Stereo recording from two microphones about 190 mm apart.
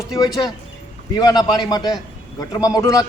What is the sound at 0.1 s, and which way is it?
A man's voice, 20° left (ahead or behind).